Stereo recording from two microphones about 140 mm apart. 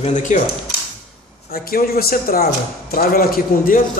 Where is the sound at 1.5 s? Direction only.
90° left.